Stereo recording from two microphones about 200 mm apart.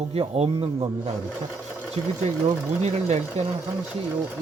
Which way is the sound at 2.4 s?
35° right (ahead or behind).